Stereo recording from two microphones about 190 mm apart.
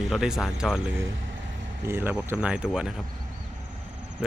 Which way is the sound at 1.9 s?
5° right (ahead or behind).